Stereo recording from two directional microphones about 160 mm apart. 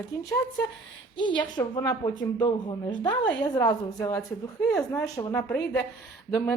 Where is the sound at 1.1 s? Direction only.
30° left (ahead or behind).